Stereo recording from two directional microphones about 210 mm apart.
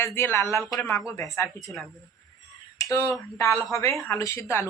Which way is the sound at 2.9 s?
15° left (ahead or behind).